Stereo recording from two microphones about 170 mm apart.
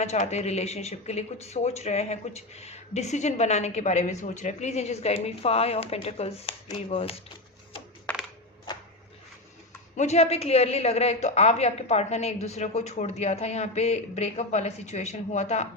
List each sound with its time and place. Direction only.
0.0 s speech: 40° left (ahead or behind)
8.1 s crushing: 5° left (ahead or behind)
8.7 s a sound: 25° left (ahead or behind)
10.0 s speech: 40° left (ahead or behind)